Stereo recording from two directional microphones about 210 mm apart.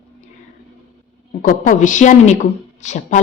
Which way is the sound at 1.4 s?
40° left (ahead or behind).